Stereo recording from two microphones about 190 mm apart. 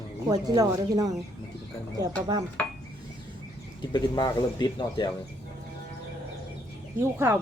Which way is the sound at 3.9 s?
20° left (ahead or behind).